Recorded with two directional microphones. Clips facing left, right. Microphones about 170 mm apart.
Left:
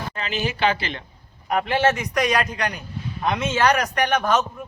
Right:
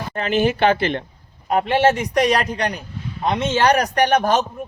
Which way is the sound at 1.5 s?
30° right (ahead or behind).